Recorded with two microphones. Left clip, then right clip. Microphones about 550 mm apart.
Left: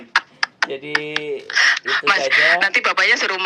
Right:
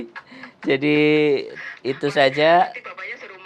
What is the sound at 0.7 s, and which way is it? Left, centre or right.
Speech, right.